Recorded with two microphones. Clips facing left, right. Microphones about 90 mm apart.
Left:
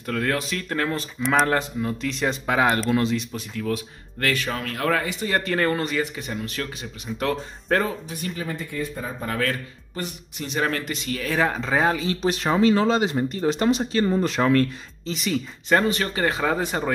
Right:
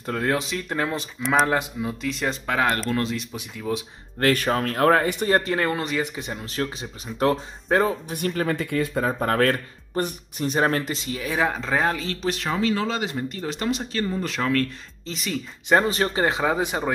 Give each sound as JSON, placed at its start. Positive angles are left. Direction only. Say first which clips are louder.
{"t": 0.0, "sound": "speech", "louder": "right 1 dB", "side_deg": -20}
{"t": 1.2, "sound": "speech", "louder": "even", "side_deg": 0}
{"t": 2.4, "sound": "speech", "louder": "left 2 dB", "side_deg": 5}
{"t": 3.3, "sound": "speech", "louder": "left 1 dB", "side_deg": -15}
{"t": 4.2, "sound": "speech", "louder": "right 5 dB", "side_deg": -45}
{"t": 5.4, "sound": "speech", "louder": "left 1 dB", "side_deg": -20}
{"t": 6.1, "sound": "speech", "louder": "right 1 dB", "side_deg": -20}
{"t": 7.7, "sound": "speech", "louder": "right 2 dB", "side_deg": -10}
{"t": 8.1, "sound": "speech", "louder": "right 5 dB", "side_deg": -55}
{"t": 8.5, "sound": "speech", "louder": "right 5 dB", "side_deg": -85}
{"t": 11.1, "sound": "speech", "louder": "left 2 dB", "side_deg": -15}
{"t": 12.2, "sound": "speech", "louder": "left 4 dB", "side_deg": 20}
{"t": 15.0, "sound": "speech", "louder": "left 4 dB", "side_deg": 0}
{"t": 15.8, "sound": "speech", "louder": "right 1 dB", "side_deg": -30}